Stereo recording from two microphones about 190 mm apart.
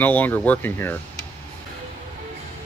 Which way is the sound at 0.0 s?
10° left (ahead or behind).